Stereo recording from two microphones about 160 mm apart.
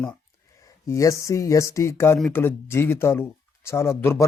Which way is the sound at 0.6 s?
20° left (ahead or behind).